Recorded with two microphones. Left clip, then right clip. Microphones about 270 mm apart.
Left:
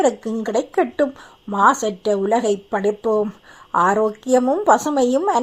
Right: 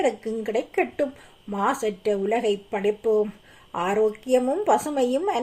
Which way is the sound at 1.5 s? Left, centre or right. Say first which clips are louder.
Left 9 dB; centre.